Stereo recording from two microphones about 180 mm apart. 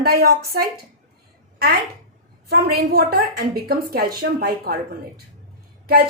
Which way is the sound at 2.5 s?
60° right (ahead or behind).